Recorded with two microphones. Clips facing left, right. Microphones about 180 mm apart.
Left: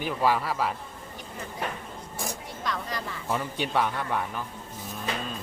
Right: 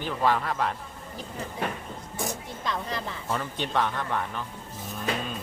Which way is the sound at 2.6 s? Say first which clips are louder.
Right 1 dB; 25° right (ahead or behind).